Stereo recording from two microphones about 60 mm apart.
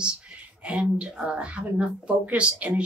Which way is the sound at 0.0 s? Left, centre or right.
Centre.